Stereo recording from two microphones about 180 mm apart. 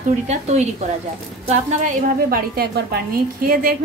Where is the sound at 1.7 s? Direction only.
40° right (ahead or behind).